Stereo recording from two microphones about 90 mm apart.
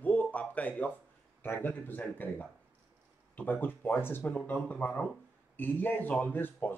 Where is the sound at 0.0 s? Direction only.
15° left (ahead or behind).